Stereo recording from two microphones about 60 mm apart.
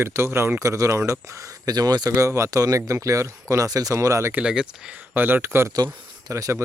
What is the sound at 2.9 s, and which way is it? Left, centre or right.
Speech, right.